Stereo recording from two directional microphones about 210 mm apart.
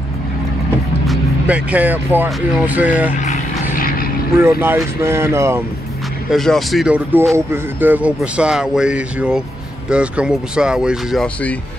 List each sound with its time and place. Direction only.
1.0 s speech: 5° right (ahead or behind)
3.7 s vehicle: 45° left (ahead or behind)
4.4 s speech: 10° right (ahead or behind)
6.3 s speech: centre (ahead or behind)